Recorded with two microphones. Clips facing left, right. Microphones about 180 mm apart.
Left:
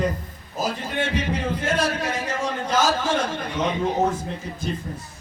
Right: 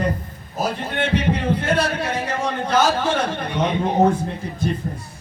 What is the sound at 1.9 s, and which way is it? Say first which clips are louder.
Speech: right 2 dB; 60° right (ahead or behind).